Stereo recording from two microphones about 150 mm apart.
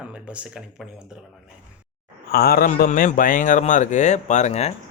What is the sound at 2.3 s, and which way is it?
Speech, 90° left.